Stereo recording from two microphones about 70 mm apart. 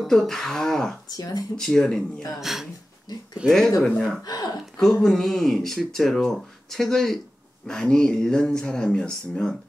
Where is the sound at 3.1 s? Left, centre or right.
Left.